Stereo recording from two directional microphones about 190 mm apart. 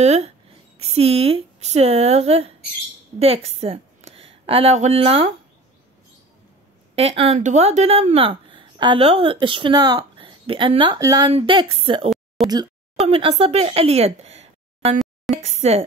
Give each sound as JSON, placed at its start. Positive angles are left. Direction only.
{"t": 0.0, "sound": "a woman's voice", "side_deg": -35}
{"t": 7.0, "sound": "a woman's voice", "side_deg": -30}
{"t": 12.4, "sound": "speech", "side_deg": 0}
{"t": 13.0, "sound": "speech", "side_deg": -30}